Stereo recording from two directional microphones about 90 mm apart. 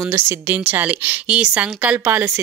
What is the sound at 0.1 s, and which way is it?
A woman's voice, 25° right (ahead or behind).